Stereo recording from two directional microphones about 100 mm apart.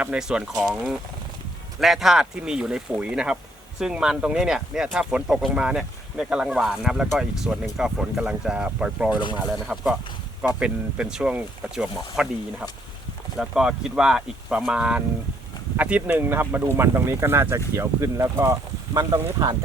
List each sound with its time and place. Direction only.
0.0 s speech: 10° right (ahead or behind)
1.8 s speech: centre (ahead or behind); by 19.5 s 40° right (ahead or behind)